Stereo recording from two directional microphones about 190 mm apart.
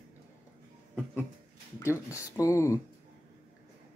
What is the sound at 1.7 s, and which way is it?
Speech, 15° left (ahead or behind).